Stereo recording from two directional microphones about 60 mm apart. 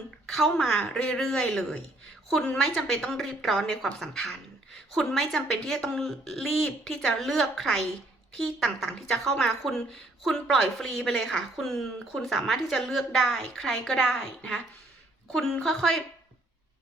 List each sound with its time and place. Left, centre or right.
0.9 s a woman's voice: centre